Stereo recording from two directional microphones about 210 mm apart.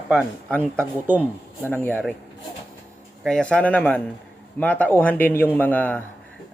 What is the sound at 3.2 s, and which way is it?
A man's voice, 5° left (ahead or behind).